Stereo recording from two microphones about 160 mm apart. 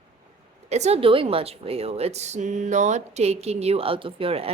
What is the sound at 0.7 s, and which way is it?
A woman's voice, 40° right (ahead or behind).